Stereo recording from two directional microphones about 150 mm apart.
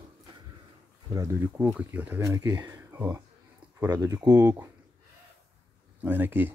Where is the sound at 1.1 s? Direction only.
15° right (ahead or behind).